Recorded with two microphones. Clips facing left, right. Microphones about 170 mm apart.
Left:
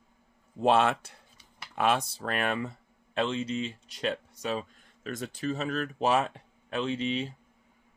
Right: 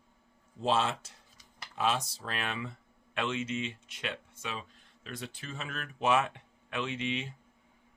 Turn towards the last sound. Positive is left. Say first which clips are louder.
# left 5 dB
turn(degrees=35)  # may be behind; listen again after turning